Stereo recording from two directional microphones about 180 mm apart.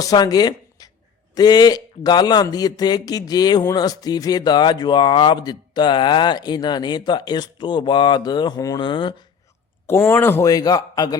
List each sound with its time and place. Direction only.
0.0 s a man's voice: 20° left (ahead or behind)
9.8 s a man's voice: 10° left (ahead or behind)